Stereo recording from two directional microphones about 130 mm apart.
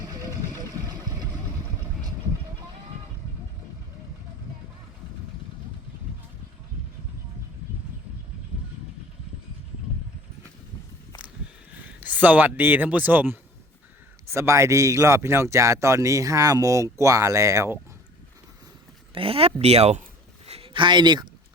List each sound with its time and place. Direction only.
0.1 s a sound: 25° right (ahead or behind)
11.9 s speech: 15° right (ahead or behind)
19.1 s speech: 45° right (ahead or behind)
20.5 s speech: 40° right (ahead or behind)